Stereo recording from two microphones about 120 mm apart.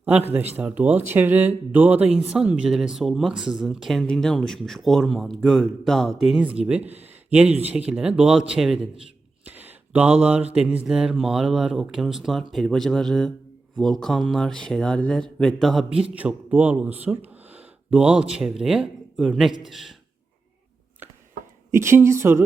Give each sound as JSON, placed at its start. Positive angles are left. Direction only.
{"t": 0.0, "sound": "speech", "side_deg": -15}
{"t": 2.2, "sound": "mantra", "side_deg": -10}
{"t": 6.4, "sound": "speech", "side_deg": -10}
{"t": 9.4, "sound": "mantra", "side_deg": -15}
{"t": 15.9, "sound": "speech", "side_deg": -10}
{"t": 17.9, "sound": "mantra", "side_deg": -10}
{"t": 21.7, "sound": "speech", "side_deg": -20}